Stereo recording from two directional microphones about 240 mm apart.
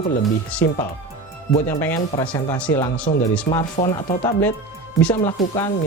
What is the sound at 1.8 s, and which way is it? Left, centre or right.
Speech, centre.